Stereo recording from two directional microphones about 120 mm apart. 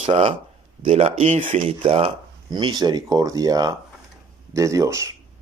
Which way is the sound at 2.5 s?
35° right (ahead or behind).